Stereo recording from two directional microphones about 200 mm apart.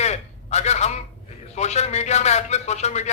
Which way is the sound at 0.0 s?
35° left (ahead or behind).